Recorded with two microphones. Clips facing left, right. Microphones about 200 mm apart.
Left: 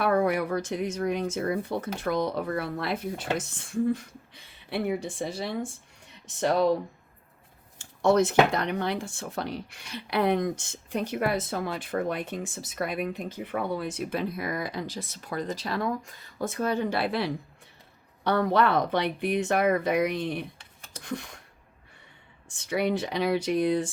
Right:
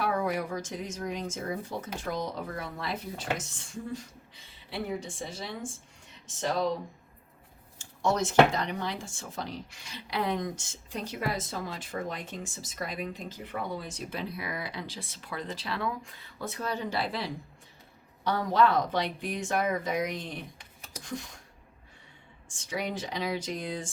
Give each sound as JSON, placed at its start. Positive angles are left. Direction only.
{"t": 0.0, "sound": "speech", "side_deg": 60}
{"t": 8.0, "sound": "speech", "side_deg": 60}
{"t": 21.0, "sound": "a sound", "side_deg": 65}
{"t": 22.4, "sound": "speech", "side_deg": 65}